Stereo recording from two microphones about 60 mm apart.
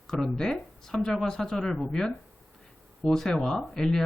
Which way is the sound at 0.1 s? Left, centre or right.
Centre.